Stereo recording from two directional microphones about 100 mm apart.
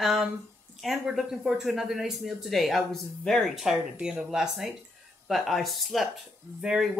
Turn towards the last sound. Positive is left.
turn(degrees=-5)  # may be behind; listen again after turning